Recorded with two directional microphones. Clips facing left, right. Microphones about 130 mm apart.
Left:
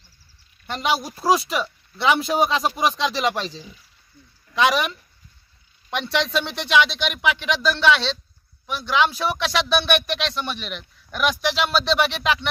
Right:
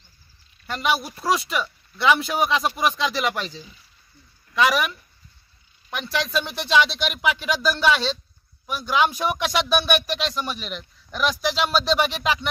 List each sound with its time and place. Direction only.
0.7 s a woman's voice: 25° left (ahead or behind)
1.1 s speech: centre (ahead or behind)
2.0 s a man's voice: 30° left (ahead or behind)
2.7 s speech: centre (ahead or behind)
3.1 s a woman's voice: 30° left (ahead or behind)
4.6 s speech: centre (ahead or behind)
5.9 s speech: 5° right (ahead or behind)